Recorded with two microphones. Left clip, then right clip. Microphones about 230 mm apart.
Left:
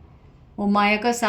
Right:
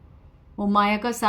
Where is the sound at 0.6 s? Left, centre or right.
Right.